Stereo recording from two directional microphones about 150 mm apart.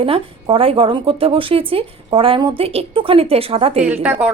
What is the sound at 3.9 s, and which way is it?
Speech, 10° right (ahead or behind).